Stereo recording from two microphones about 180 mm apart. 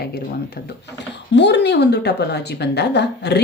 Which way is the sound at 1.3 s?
75° left (ahead or behind).